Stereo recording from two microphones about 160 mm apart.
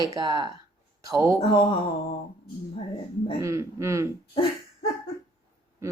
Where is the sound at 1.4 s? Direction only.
35° left (ahead or behind).